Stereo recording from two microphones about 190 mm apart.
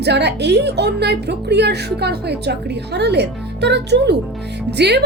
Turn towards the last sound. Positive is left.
turn(degrees=-60)  # may be behind; listen again after turning